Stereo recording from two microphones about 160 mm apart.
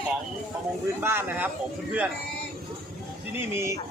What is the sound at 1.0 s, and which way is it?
Speech, 15° right (ahead or behind).